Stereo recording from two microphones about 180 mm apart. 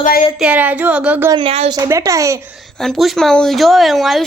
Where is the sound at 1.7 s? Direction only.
20° right (ahead or behind).